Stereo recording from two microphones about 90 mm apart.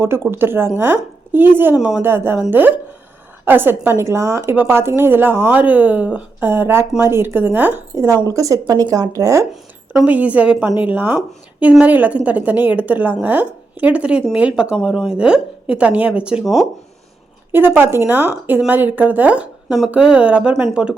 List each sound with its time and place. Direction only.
0.0 s a woman's voice: 25° right (ahead or behind)
1.7 s a woman's voice: 10° right (ahead or behind)
2.0 s a woman's voice: 25° right (ahead or behind)
7.9 s speech: 35° right (ahead or behind)
9.9 s a woman's voice: 15° right (ahead or behind)
16.4 s speech: centre (ahead or behind)
17.5 s a woman's voice: 20° right (ahead or behind)
19.6 s a woman's voice: 5° right (ahead or behind)